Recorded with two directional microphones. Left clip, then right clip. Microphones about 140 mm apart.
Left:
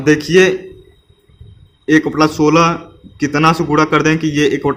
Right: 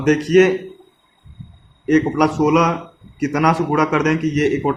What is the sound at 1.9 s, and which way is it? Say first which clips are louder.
Speech: left 4 dB; 90° left.